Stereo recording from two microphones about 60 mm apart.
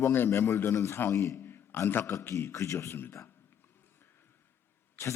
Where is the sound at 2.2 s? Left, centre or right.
Left.